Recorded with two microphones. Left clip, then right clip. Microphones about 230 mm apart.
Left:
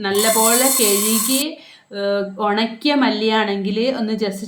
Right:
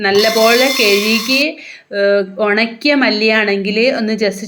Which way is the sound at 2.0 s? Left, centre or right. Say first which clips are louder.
Right 7 dB; centre.